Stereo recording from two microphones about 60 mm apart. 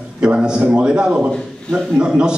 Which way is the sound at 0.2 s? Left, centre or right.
Centre.